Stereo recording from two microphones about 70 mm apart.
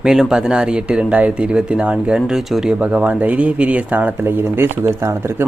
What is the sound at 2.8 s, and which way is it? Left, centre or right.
Speech, centre.